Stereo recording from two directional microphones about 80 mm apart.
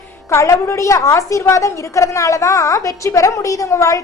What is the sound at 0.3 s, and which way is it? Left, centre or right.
A woman's voice, left.